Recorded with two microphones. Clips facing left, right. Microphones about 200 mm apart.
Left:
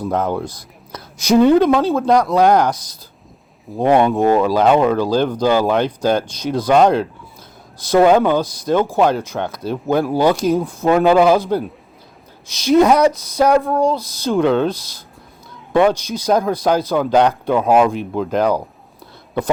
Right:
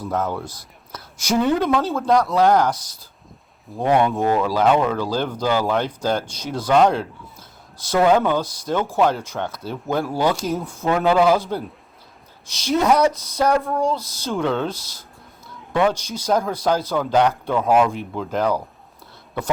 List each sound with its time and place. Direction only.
0.0 s a man's voice: 15° left (ahead or behind)
3.8 s speech: 20° left (ahead or behind)
4.6 s speech: 30° left (ahead or behind)
4.9 s speech: 15° left (ahead or behind)
8.2 s speech: 15° left (ahead or behind)
10.6 s speech: 35° left (ahead or behind)
10.8 s speech: 15° left (ahead or behind)